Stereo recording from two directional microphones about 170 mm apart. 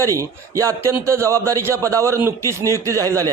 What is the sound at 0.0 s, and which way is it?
A man's voice, 15° right (ahead or behind).